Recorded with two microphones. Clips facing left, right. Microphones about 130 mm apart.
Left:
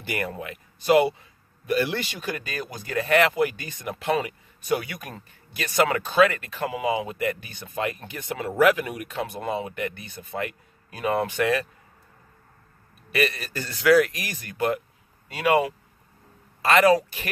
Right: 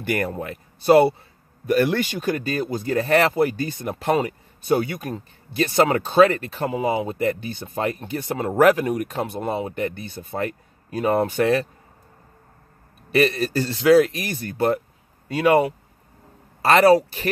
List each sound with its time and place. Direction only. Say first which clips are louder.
0.0 s speech: right 6 dB; 55° right (ahead or behind)
0.3 s speech: right 5 dB; 35° right (ahead or behind)
1.7 s speech: right 5 dB; 50° right (ahead or behind)
9.3 s speech: right 3 dB; 30° right (ahead or behind)
13.1 s speech: right 7 dB; 30° right (ahead or behind)
16.6 s speech: right 4 dB; 35° right (ahead or behind)